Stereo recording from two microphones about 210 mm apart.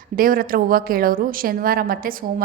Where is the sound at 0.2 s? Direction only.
40° right (ahead or behind).